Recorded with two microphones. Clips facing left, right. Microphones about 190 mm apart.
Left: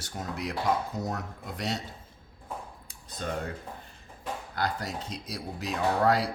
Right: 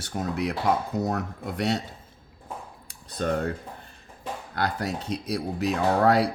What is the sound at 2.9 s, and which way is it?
Computer keyboard, 60° right (ahead or behind).